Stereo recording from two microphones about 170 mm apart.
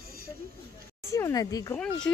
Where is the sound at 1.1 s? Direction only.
15° left (ahead or behind).